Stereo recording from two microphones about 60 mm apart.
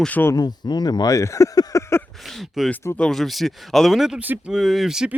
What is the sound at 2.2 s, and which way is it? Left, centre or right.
Speech, centre.